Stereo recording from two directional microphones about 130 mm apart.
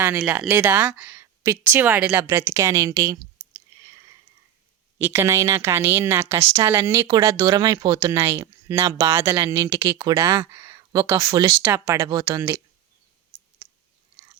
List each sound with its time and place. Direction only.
0.3 s speech: 15° right (ahead or behind)
3.5 s a sound: 25° right (ahead or behind)
4.9 s speech: 15° right (ahead or behind)
9.9 s speech: 35° right (ahead or behind)
10.2 s speech: 25° right (ahead or behind)